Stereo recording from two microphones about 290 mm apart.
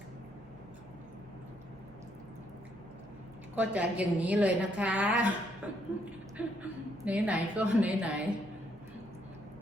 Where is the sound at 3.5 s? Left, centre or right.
Centre.